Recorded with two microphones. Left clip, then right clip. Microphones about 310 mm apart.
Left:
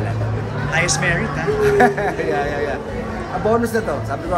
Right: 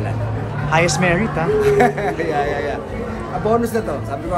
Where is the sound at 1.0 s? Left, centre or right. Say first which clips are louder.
Right 2 dB; centre.